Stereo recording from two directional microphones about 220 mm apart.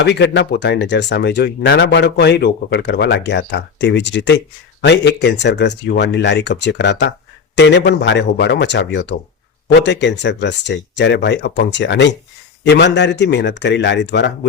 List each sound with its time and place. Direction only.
0.0 s speech: 50° left (ahead or behind)